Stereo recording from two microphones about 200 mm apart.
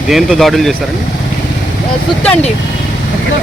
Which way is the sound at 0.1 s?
Centre (ahead or behind).